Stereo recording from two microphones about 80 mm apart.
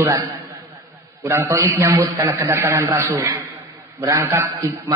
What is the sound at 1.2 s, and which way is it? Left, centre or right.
Speech, right.